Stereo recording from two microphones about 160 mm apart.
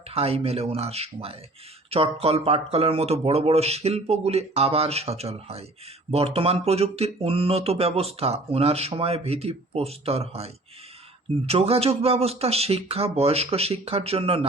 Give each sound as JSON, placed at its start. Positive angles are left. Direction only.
{"t": 0.1, "sound": "speech", "side_deg": -40}